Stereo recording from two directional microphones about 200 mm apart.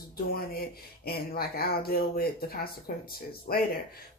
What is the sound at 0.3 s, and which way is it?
Speech, 50° left (ahead or behind).